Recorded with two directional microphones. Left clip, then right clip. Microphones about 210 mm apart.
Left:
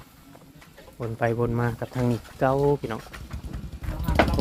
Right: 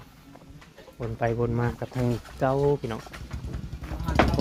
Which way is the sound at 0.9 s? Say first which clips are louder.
Left 2 dB; 20° left (ahead or behind).